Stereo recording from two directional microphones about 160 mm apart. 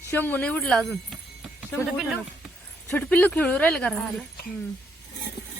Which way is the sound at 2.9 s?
10° left (ahead or behind).